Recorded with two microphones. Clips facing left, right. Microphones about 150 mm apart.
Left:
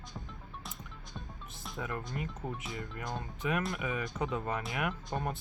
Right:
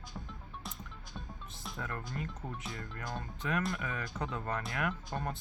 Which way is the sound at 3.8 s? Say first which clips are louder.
Left 4 dB; 15° left (ahead or behind).